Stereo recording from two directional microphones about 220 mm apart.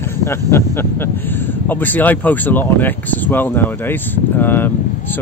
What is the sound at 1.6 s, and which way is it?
Speech, 10° left (ahead or behind).